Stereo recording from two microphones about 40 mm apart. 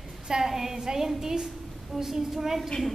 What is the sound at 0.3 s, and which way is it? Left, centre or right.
A woman's voice, centre.